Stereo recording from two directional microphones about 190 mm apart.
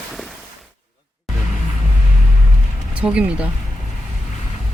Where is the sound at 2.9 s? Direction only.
5° right (ahead or behind).